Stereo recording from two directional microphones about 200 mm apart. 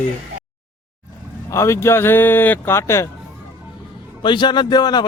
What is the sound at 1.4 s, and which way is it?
Speech, 15° left (ahead or behind).